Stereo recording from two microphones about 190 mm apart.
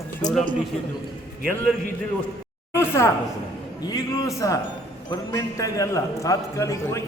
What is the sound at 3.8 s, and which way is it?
A man's voice, 20° left (ahead or behind).